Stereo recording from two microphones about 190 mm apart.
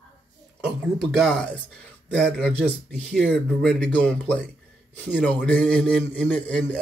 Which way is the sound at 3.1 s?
Centre (ahead or behind).